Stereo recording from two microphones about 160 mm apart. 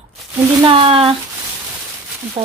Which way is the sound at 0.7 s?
35° right (ahead or behind).